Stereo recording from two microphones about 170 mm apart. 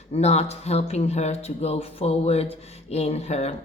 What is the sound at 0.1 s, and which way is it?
Speech, 40° left (ahead or behind).